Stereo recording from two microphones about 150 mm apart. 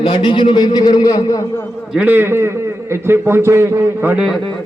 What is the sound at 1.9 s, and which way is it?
A man's voice, 10° right (ahead or behind).